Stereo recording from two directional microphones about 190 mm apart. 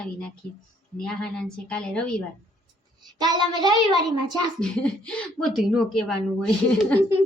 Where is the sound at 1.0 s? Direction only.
5° left (ahead or behind).